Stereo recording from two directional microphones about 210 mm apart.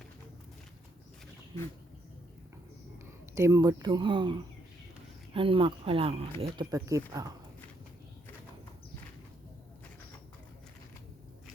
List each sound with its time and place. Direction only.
3.3 s speech: 15° right (ahead or behind)
6.4 s speech: 15° right (ahead or behind)